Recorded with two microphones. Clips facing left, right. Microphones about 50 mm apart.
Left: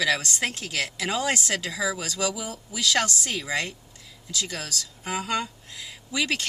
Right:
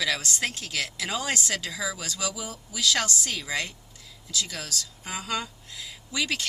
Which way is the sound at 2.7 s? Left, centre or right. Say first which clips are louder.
Left 2 dB; centre.